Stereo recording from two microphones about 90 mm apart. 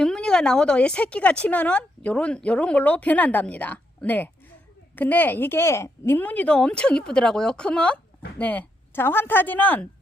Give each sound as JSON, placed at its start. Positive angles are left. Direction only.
{"t": 0.0, "sound": "a woman's voice", "side_deg": 5}